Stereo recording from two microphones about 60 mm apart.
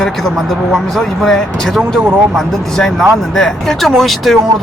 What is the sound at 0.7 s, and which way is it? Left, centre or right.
Speech, centre.